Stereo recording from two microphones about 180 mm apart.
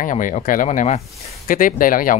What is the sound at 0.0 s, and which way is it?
Speech, 45° left (ahead or behind).